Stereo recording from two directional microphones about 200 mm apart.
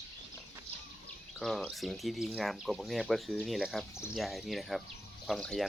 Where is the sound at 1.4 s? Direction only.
Centre (ahead or behind).